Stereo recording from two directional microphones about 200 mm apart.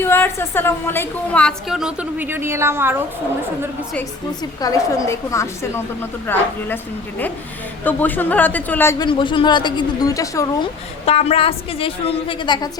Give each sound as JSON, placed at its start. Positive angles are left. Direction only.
{"t": 0.0, "sound": "a woman's voice", "side_deg": 10}
{"t": 4.6, "sound": "speech", "side_deg": 15}
{"t": 7.9, "sound": "speech", "side_deg": 10}
{"t": 9.0, "sound": "a woman's voice", "side_deg": 25}
{"t": 11.0, "sound": "a woman's voice", "side_deg": 30}